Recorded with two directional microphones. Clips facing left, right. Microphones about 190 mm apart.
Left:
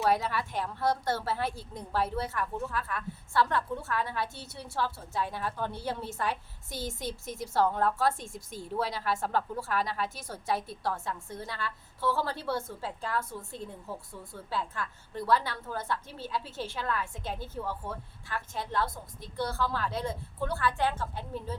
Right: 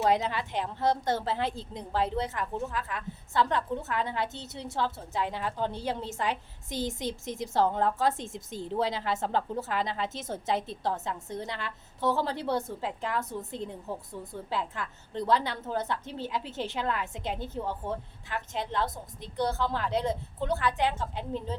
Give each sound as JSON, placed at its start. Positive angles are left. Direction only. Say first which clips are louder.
{"t": 0.0, "sound": "a woman's voice", "louder": "right 2 dB", "side_deg": -20}